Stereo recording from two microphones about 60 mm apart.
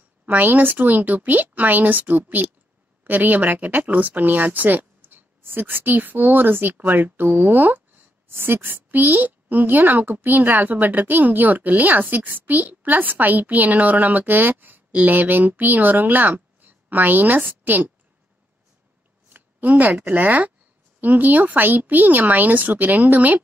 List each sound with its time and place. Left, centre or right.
0.2 s a woman's voice: right
19.2 s speech: right